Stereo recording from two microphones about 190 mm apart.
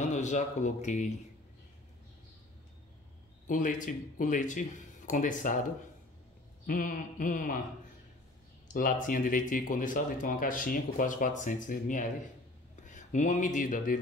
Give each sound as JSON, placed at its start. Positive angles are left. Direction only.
{"t": 0.0, "sound": "speech", "side_deg": 40}
{"t": 3.4, "sound": "speech", "side_deg": 45}
{"t": 8.7, "sound": "speech", "side_deg": 45}